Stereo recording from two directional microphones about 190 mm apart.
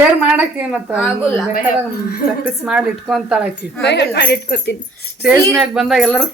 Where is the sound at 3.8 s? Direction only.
65° left (ahead or behind).